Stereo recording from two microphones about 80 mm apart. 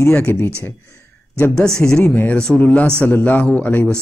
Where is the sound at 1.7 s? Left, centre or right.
Centre.